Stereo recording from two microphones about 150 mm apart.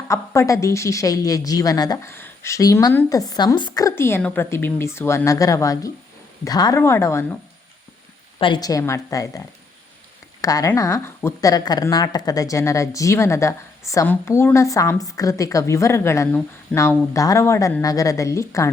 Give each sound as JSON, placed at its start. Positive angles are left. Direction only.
{"t": 0.1, "sound": "a woman's voice", "side_deg": 20}
{"t": 8.4, "sound": "speech", "side_deg": 30}
{"t": 10.4, "sound": "speech", "side_deg": 25}